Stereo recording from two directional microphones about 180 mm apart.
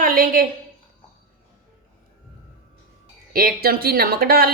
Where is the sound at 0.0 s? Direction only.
50° right (ahead or behind).